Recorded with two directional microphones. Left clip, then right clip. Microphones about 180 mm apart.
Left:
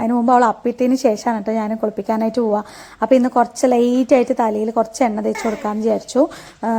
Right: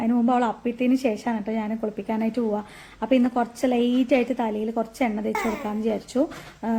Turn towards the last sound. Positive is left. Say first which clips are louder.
# left 9 dB
turn(degrees=30)  # may be behind; listen again after turning